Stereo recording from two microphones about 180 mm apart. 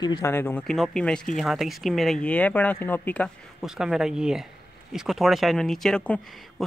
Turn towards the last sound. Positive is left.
turn(degrees=5)  # may be behind; listen again after turning